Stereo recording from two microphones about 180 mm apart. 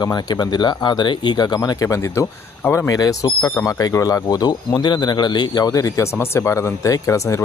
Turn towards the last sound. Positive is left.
turn(degrees=15)  # may be behind; listen again after turning